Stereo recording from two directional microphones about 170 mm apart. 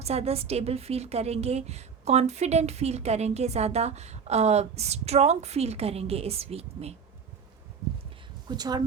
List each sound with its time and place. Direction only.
0.0 s a woman's voice: 40° right (ahead or behind)
8.4 s speech: 25° right (ahead or behind)